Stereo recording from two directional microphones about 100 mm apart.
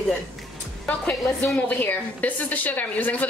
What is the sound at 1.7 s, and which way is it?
A woman's voice, 15° left (ahead or behind).